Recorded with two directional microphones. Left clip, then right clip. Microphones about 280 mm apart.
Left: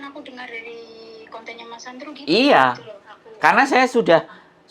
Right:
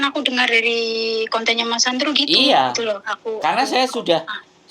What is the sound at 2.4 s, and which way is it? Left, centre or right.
Speech, centre.